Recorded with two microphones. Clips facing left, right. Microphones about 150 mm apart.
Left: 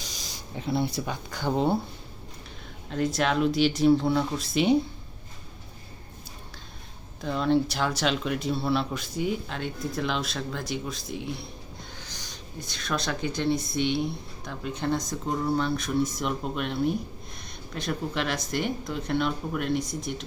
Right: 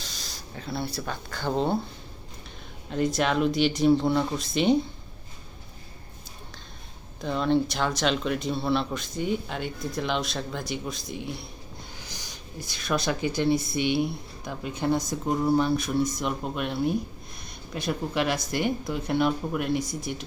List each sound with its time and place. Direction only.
0.0 s speech: 15° left (ahead or behind)
2.9 s speech: centre (ahead or behind)
7.2 s speech: centre (ahead or behind)